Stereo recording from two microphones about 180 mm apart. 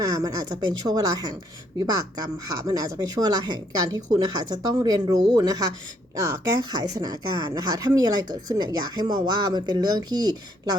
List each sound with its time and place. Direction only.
0.0 s speech: 20° right (ahead or behind)
2.6 s speech: 20° right (ahead or behind)